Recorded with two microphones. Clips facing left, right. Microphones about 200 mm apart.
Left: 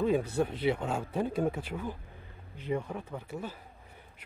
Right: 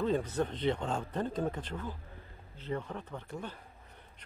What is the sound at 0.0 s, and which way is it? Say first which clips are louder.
Speech: left 3 dB; 10° left (ahead or behind).